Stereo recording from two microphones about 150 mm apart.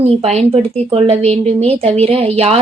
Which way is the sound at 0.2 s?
45° right (ahead or behind).